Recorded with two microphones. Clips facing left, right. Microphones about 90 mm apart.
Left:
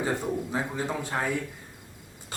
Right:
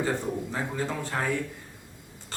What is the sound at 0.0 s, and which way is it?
A man's voice, 15° left (ahead or behind).